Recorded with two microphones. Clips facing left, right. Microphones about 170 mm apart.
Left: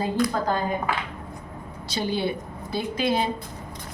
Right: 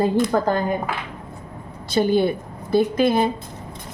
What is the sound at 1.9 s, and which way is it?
A woman's voice, 50° right (ahead or behind).